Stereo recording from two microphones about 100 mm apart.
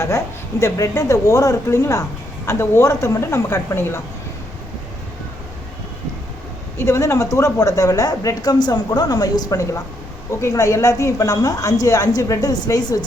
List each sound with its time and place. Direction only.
0.6 s speech: 30° left (ahead or behind)
6.7 s speech: 25° left (ahead or behind)